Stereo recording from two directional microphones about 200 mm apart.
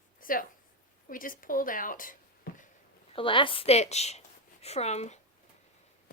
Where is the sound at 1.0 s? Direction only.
45° left (ahead or behind).